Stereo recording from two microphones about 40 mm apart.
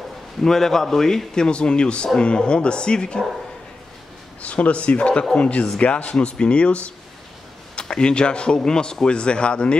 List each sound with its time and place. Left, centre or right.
0.4 s a man's voice: centre
4.4 s speech: left